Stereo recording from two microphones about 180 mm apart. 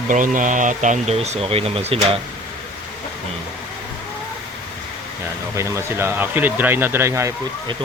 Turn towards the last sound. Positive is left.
turn(degrees=-15)  # may be behind; listen again after turning